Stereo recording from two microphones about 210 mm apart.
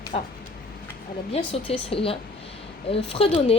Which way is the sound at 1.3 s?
25° left (ahead or behind).